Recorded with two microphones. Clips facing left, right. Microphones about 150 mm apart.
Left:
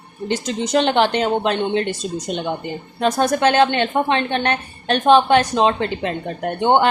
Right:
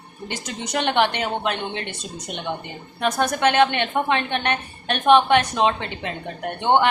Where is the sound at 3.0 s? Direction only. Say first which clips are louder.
Left 4 dB; 30° left (ahead or behind).